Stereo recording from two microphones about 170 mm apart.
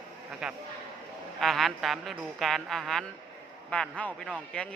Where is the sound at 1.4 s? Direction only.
Centre (ahead or behind).